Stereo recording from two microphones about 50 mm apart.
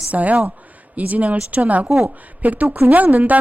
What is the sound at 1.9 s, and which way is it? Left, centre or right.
Speech, centre.